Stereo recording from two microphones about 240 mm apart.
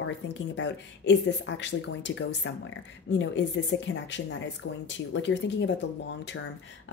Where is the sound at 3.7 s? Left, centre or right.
Left.